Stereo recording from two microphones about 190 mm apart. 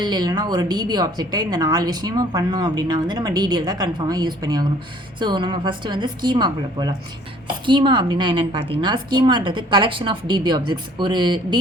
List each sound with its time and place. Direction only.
0.0 s a woman's voice: 25° right (ahead or behind)